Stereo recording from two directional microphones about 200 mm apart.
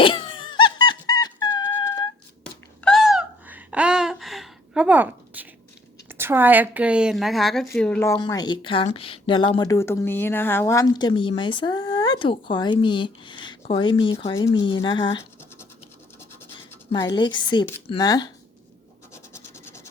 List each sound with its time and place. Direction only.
0.0 s wail: 25° left (ahead or behind)
1.7 s a sound: 15° left (ahead or behind)
2.8 s a sound: centre (ahead or behind)
6.1 s a woman's voice: 10° right (ahead or behind); by 15.1 s 20° left (ahead or behind)
16.9 s speech: 20° left (ahead or behind)
19.1 s scratch: 15° left (ahead or behind)